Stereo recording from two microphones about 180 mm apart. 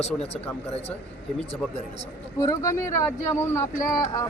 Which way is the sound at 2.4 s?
20° left (ahead or behind).